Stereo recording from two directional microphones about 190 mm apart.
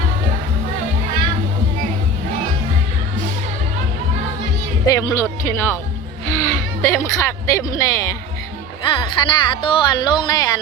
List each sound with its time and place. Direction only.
4.9 s speech: 20° left (ahead or behind)